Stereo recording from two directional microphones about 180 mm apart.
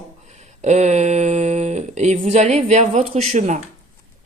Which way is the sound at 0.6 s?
40° right (ahead or behind).